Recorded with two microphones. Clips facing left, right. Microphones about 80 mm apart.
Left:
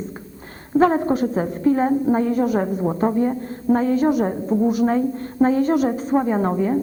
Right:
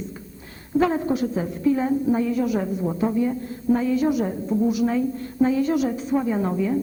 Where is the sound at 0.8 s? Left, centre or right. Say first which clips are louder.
Left 4 dB; left.